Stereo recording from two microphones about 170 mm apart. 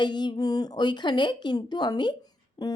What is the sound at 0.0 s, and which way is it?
Speech, 25° left (ahead or behind).